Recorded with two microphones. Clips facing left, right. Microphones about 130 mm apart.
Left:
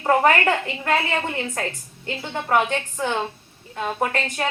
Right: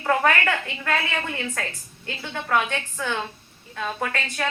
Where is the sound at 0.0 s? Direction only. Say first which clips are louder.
Left 4 dB; 30° left (ahead or behind).